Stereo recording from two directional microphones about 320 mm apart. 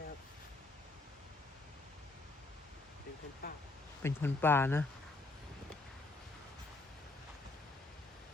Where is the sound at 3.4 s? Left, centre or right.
Left.